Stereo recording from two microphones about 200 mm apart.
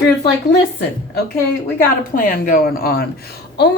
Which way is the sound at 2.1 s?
45° left (ahead or behind).